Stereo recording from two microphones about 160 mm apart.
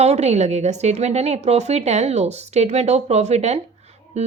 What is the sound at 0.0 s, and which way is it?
A woman's voice, 40° right (ahead or behind).